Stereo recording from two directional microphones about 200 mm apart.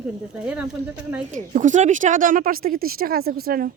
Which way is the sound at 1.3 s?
40° right (ahead or behind).